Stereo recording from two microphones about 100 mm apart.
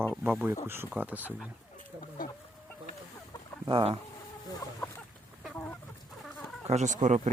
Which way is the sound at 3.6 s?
60° right (ahead or behind).